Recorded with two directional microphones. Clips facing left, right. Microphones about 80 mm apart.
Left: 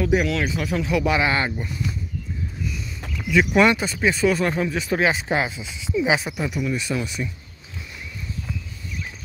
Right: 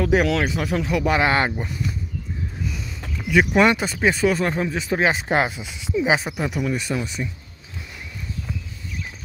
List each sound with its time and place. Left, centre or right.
0.1 s speech: right
0.4 s speech: right
3.3 s speech: right
4.0 s speech: right
4.3 s speech: right
5.1 s speech: right
5.9 s speech: right
7.2 s speech: right